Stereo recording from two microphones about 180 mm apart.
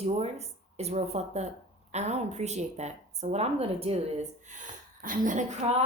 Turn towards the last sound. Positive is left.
turn(degrees=-40)  # may be behind; listen again after turning